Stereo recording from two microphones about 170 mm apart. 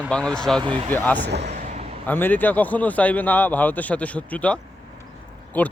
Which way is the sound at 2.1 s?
10° left (ahead or behind).